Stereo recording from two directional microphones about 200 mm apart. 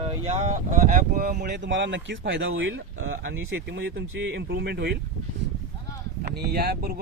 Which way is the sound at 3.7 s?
55° right (ahead or behind).